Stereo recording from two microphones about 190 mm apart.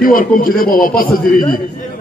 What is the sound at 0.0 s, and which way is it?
A man's voice, 50° left (ahead or behind).